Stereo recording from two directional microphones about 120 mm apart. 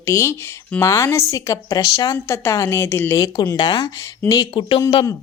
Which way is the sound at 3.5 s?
35° left (ahead or behind).